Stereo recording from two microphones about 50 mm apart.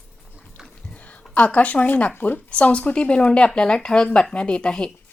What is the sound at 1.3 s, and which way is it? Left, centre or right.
Speech, left.